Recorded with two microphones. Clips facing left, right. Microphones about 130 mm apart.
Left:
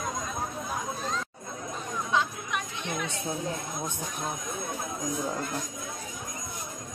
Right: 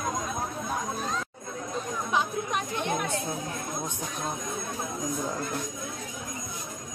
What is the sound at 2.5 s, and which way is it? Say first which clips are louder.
Chatter: right 5 dB; 45° right (ahead or behind).